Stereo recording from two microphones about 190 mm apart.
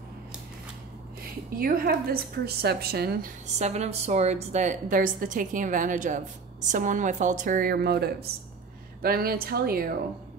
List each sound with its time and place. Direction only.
1.5 s a woman's voice: 50° right (ahead or behind)
3.4 s a woman's voice: 35° right (ahead or behind); by 9.8 s 50° right (ahead or behind)